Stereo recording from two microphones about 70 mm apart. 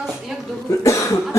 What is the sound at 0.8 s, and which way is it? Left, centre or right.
Cough, left.